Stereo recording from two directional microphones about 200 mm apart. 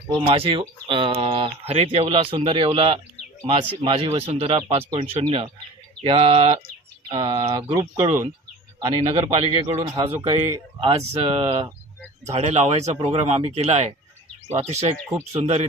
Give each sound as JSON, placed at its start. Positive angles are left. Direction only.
{"t": 0.3, "sound": "speech", "side_deg": -25}
{"t": 9.9, "sound": "speech", "side_deg": -15}
{"t": 10.8, "sound": "speech", "side_deg": -25}